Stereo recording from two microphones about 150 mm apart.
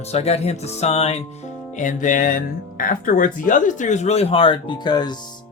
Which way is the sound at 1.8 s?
60° left (ahead or behind).